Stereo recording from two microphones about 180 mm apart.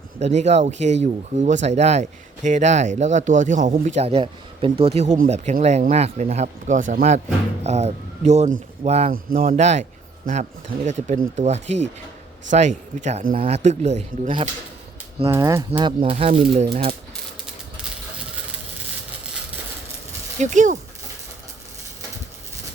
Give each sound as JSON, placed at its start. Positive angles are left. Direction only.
{"t": 0.2, "sound": "speech", "side_deg": -40}
{"t": 7.6, "sound": "speech", "side_deg": -35}
{"t": 9.3, "sound": "speech", "side_deg": -50}
{"t": 10.8, "sound": "speech", "side_deg": -45}
{"t": 15.3, "sound": "speech", "side_deg": -20}
{"t": 15.9, "sound": "speech", "side_deg": -30}
{"t": 20.4, "sound": "speech", "side_deg": -45}